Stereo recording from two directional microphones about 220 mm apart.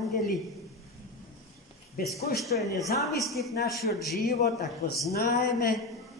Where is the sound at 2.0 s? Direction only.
45° left (ahead or behind).